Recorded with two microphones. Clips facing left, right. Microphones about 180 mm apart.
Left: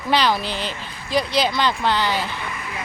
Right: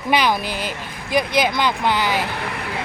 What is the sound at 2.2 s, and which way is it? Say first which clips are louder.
Speech: right 3 dB; 70° right (ahead or behind).